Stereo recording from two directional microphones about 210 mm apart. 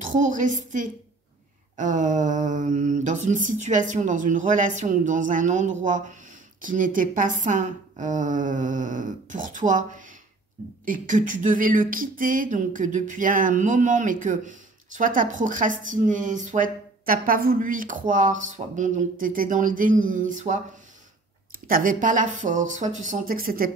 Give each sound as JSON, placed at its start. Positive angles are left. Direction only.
{"t": 0.0, "sound": "speech", "side_deg": -35}
{"t": 21.6, "sound": "speech", "side_deg": -40}